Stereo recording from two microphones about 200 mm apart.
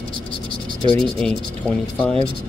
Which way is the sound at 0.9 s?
5° left (ahead or behind).